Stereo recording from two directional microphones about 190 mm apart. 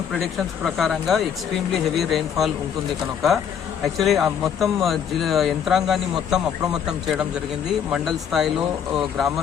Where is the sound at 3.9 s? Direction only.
Centre (ahead or behind).